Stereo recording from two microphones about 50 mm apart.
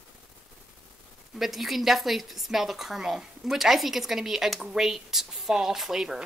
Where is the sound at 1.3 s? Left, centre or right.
Centre.